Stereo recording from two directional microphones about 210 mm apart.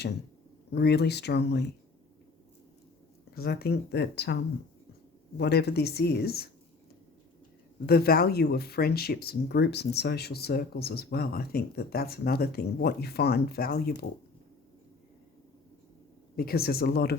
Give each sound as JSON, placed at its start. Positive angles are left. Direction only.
{"t": 0.7, "sound": "speech", "side_deg": 50}
{"t": 3.3, "sound": "speech", "side_deg": 50}
{"t": 5.4, "sound": "speech", "side_deg": 50}
{"t": 7.9, "sound": "speech", "side_deg": 45}
{"t": 16.3, "sound": "speech", "side_deg": 45}